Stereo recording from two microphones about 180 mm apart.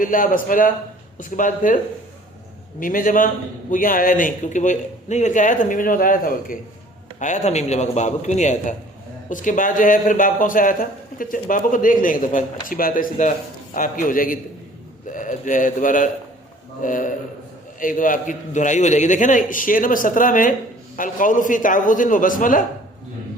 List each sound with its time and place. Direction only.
0.0 s a man's voice: 50° left (ahead or behind)
2.8 s a man's voice: 50° left (ahead or behind)